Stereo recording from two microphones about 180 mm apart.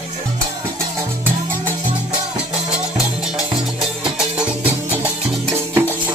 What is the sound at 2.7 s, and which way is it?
Music, 5° right (ahead or behind).